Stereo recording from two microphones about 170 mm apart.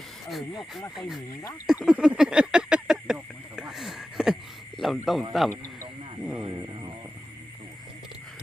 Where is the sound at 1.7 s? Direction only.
5° right (ahead or behind).